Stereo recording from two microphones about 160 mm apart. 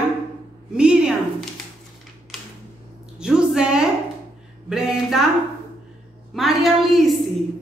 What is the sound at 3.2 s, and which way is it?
A woman's voice, 5° right (ahead or behind).